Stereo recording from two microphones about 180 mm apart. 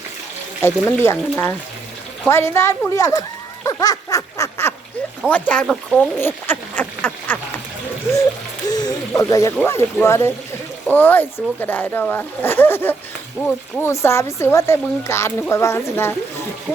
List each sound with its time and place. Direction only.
0.6 s speech: 15° left (ahead or behind)
8.6 s speech: 20° left (ahead or behind)